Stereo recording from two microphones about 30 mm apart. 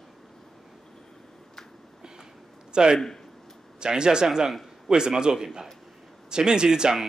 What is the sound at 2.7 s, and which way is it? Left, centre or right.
A man's voice, right.